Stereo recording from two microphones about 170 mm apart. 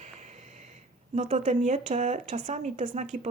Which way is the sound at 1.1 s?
45° right (ahead or behind).